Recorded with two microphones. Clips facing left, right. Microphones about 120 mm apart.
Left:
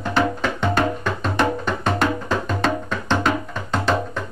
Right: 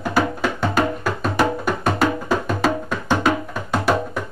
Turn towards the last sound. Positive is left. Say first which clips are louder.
# right 2 dB
turn(degrees=-10)  # may be behind; listen again after turning